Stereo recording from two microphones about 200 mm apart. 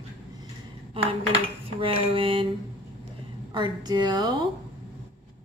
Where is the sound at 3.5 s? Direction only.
20° right (ahead or behind).